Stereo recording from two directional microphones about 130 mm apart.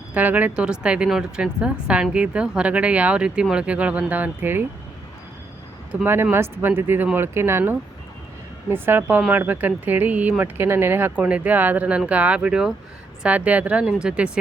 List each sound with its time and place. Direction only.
0.1 s speech: 15° right (ahead or behind)
5.9 s speech: 15° right (ahead or behind)